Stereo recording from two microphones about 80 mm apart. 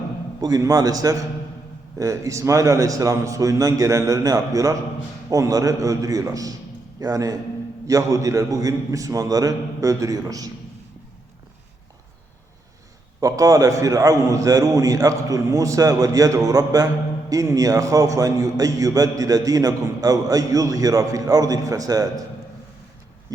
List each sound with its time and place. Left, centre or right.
0.4 s a man's voice: right
13.1 s a man's voice: right